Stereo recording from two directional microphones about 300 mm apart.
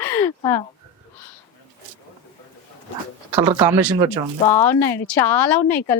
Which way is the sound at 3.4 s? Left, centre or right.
Centre.